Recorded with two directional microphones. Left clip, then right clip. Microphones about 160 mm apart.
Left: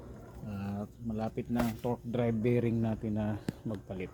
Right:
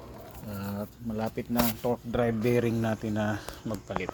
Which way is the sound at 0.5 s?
5° left (ahead or behind).